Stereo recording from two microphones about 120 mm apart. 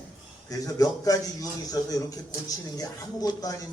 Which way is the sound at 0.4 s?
30° left (ahead or behind).